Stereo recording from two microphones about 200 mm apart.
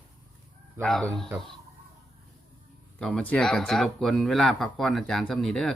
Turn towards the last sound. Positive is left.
turn(degrees=5)  # may be behind; listen again after turning